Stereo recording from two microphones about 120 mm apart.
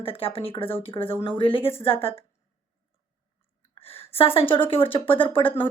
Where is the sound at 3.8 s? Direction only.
50° left (ahead or behind).